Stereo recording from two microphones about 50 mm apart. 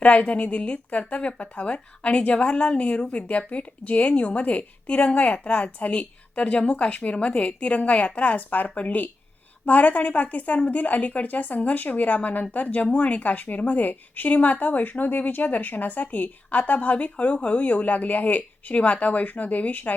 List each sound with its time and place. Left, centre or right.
0.0 s a woman's voice: left